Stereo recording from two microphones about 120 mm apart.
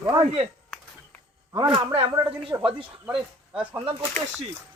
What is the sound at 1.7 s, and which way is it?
Speech, 45° right (ahead or behind).